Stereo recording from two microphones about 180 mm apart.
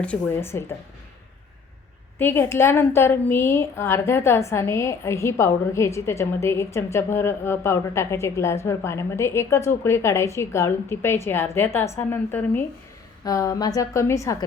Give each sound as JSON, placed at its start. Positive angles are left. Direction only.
{"t": 0.0, "sound": "a woman's voice", "side_deg": 10}
{"t": 2.1, "sound": "a woman's voice", "side_deg": 10}